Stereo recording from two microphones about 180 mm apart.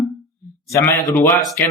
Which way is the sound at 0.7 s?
15° left (ahead or behind).